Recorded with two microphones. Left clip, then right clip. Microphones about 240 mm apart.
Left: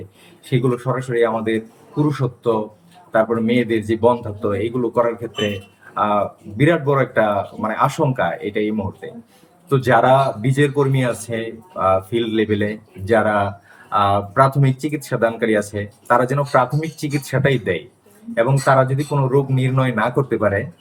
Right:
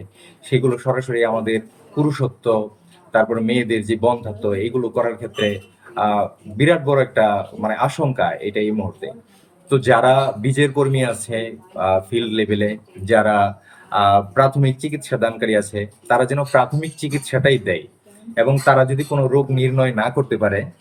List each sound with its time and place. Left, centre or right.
0.5 s speech: centre